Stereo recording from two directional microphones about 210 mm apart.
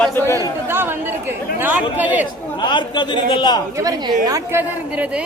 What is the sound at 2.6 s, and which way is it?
A man's voice, 20° left (ahead or behind).